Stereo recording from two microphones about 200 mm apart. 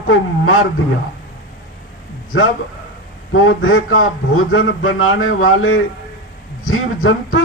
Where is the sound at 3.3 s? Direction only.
90° left.